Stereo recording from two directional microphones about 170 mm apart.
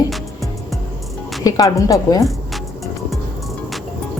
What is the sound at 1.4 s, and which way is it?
Speech, 20° left (ahead or behind).